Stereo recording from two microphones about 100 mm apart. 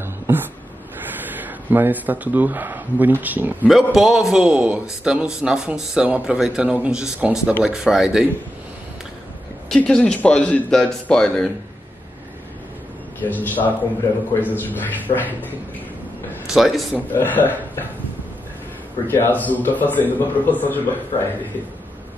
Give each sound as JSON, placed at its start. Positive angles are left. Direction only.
{"t": 0.0, "sound": "a sound", "side_deg": -20}
{"t": 1.2, "sound": "speech", "side_deg": -20}
{"t": 3.6, "sound": "a man's voice", "side_deg": 0}
{"t": 9.7, "sound": "a man's voice", "side_deg": 5}
{"t": 13.2, "sound": "a man's voice", "side_deg": 20}
{"t": 16.4, "sound": "a man's voice", "side_deg": -5}
{"t": 17.1, "sound": "speech", "side_deg": 20}
{"t": 19.0, "sound": "a man's voice", "side_deg": 20}